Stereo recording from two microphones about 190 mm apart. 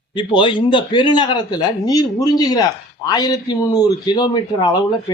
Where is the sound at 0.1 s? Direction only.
25° left (ahead or behind).